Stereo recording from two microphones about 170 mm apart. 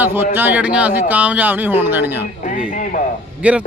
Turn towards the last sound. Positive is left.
turn(degrees=-10)  # may be behind; listen again after turning